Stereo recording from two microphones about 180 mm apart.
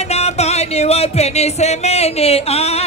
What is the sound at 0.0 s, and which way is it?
Music, 35° left (ahead or behind).